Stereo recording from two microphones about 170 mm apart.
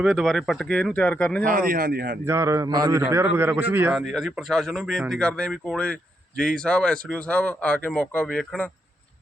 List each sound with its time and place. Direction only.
0.0 s speech: centre (ahead or behind)
1.5 s speech: 55° right (ahead or behind)
2.2 s a man's voice: 15° right (ahead or behind)
3.9 s speech: centre (ahead or behind)